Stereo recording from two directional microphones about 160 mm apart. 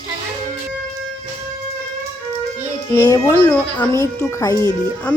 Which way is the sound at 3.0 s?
20° left (ahead or behind).